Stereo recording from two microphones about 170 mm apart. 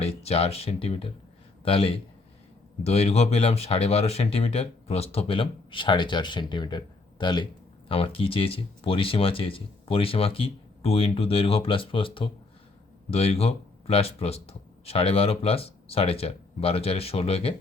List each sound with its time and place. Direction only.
0.0 s speech: 35° left (ahead or behind)